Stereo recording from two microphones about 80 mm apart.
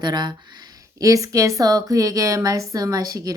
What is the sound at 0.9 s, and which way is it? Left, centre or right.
A woman's voice, right.